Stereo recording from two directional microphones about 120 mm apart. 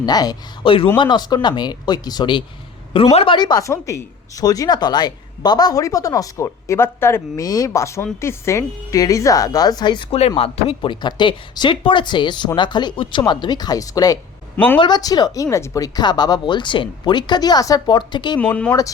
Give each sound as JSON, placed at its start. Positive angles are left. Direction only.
{"t": 0.0, "sound": "speech", "side_deg": 35}
{"t": 0.6, "sound": "a man's voice", "side_deg": 45}
{"t": 2.9, "sound": "a man's voice", "side_deg": 55}
{"t": 3.3, "sound": "speech", "side_deg": 35}
{"t": 14.5, "sound": "a man's voice", "side_deg": 15}
{"t": 14.8, "sound": "speech", "side_deg": 35}
{"t": 18.3, "sound": "speech", "side_deg": 10}